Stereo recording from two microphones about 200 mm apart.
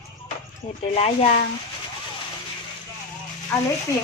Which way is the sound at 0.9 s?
30° left (ahead or behind).